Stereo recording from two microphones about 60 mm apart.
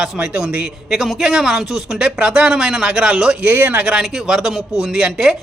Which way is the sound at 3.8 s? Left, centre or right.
Centre.